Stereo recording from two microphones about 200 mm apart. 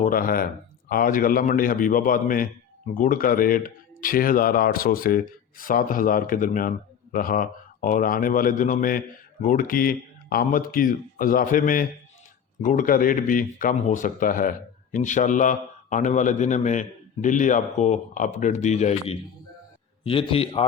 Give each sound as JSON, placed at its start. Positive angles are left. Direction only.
{"t": 0.0, "sound": "a man's voice", "side_deg": 45}